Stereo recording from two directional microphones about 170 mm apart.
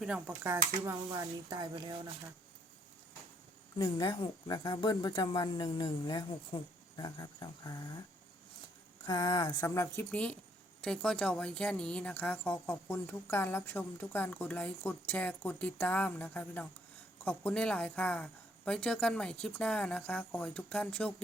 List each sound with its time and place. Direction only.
0.0 s speech: 5° right (ahead or behind)
0.5 s speech: 15° right (ahead or behind)
3.8 s speech: 25° left (ahead or behind)
9.0 s a woman's voice: 25° left (ahead or behind); by 21.1 s 5° left (ahead or behind)